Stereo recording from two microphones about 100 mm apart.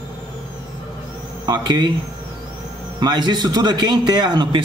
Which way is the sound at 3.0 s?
45° right (ahead or behind).